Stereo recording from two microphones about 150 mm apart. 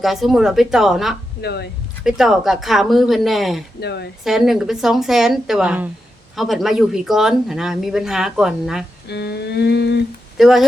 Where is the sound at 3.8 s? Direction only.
90° left.